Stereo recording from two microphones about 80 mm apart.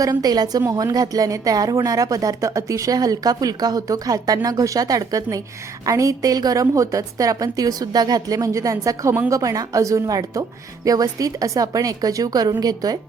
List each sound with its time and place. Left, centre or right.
0.0 s speech: right